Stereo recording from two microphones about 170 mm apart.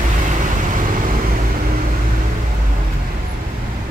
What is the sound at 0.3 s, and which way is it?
Vehicle, 50° right (ahead or behind).